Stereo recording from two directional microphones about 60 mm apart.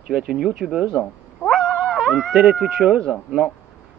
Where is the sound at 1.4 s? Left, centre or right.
Centre.